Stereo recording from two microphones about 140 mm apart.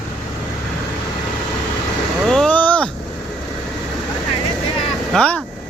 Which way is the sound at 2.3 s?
5° left (ahead or behind).